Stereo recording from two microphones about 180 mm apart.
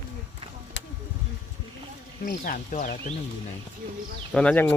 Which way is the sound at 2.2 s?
50° left (ahead or behind).